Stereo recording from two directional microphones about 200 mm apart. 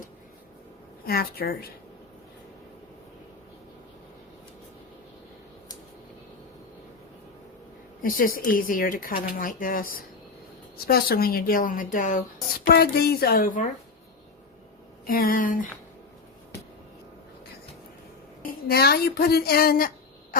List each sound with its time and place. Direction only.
1.0 s speech: 50° left (ahead or behind)
8.0 s speech: 45° left (ahead or behind)
12.7 s speech: 55° left (ahead or behind)
15.0 s speech: 45° left (ahead or behind)
18.7 s speech: 50° left (ahead or behind)